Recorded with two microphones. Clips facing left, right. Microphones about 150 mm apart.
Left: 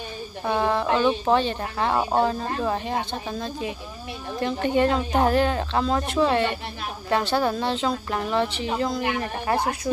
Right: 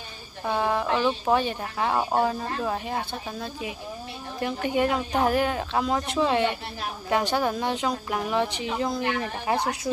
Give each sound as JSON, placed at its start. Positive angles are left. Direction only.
{"t": 0.5, "sound": "speech", "side_deg": -10}